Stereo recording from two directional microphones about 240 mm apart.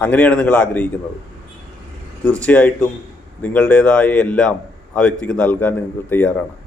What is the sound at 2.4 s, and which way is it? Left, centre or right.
A man's voice, centre.